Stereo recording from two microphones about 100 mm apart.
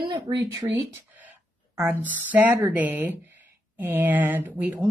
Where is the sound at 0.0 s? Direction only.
50° right (ahead or behind).